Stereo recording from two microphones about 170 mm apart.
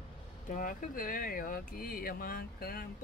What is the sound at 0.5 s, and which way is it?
Speech, 50° left (ahead or behind).